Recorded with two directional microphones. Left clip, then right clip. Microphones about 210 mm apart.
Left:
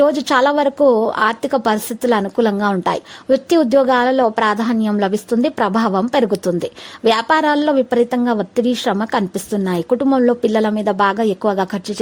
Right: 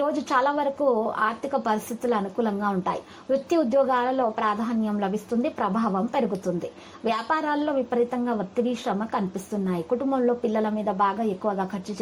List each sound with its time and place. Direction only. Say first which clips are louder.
0.0 s a woman's voice: left 10 dB; 40° left (ahead or behind)